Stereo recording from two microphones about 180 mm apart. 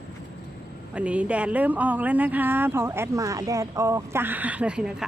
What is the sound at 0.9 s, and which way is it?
Speech, 5° right (ahead or behind).